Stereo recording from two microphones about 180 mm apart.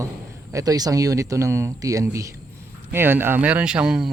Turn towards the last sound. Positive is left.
turn(degrees=-5)  # may be behind; listen again after turning